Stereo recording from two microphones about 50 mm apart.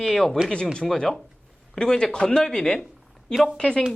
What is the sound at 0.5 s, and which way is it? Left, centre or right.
Speech, centre.